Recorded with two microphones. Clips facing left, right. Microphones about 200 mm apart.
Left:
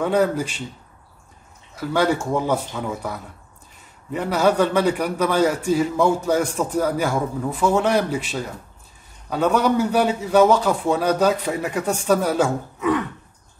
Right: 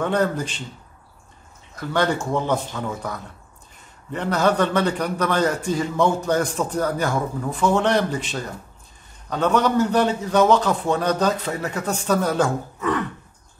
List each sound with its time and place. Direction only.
0.0 s a man's voice: 5° left (ahead or behind)
1.8 s a man's voice: 10° left (ahead or behind)